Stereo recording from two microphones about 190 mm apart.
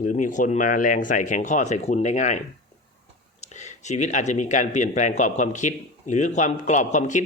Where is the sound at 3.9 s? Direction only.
40° left (ahead or behind).